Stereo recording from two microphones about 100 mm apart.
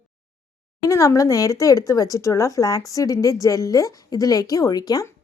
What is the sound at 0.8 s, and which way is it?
A woman's voice, 35° left (ahead or behind).